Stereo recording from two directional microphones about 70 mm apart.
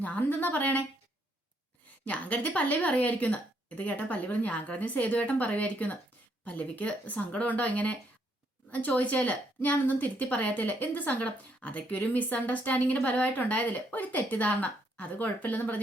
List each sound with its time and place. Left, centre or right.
0.0 s a woman's voice: left
2.0 s a woman's voice: left